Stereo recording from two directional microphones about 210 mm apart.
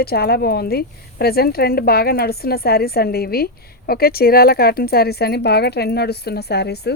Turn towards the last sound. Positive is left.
turn(degrees=50)  # may be behind; listen again after turning